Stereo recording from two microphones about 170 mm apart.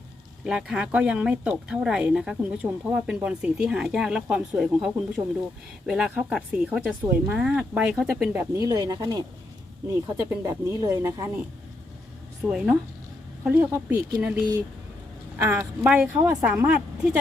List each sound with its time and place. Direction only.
0.4 s speech: 5° right (ahead or behind)
8.4 s a woman's voice: 20° right (ahead or behind)
12.4 s a woman's voice: 5° right (ahead or behind)
15.4 s a woman's voice: 15° right (ahead or behind)